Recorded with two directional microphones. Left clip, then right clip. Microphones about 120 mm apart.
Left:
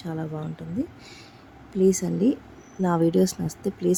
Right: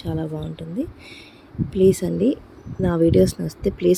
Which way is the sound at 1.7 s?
15° right (ahead or behind).